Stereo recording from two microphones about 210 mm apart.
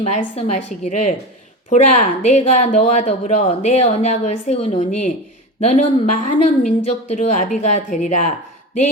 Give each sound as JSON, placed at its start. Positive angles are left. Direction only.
{"t": 0.0, "sound": "a woman's voice", "side_deg": 30}